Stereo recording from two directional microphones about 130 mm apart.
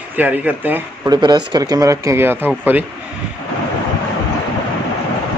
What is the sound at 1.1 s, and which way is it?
Speech, 35° right (ahead or behind).